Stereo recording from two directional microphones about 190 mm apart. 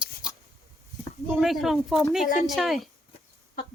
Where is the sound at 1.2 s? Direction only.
Centre (ahead or behind).